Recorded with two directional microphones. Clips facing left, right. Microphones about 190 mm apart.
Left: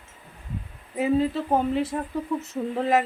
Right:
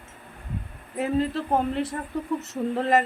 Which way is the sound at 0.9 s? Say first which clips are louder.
Left 2 dB; centre (ahead or behind).